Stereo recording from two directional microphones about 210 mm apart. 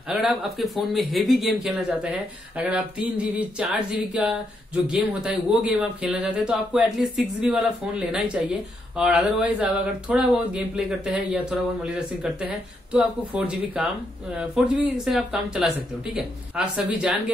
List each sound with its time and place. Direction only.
0.1 s speech: centre (ahead or behind)